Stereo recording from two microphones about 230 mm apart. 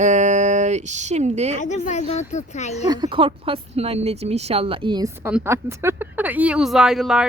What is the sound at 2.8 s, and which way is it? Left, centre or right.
Speech, centre.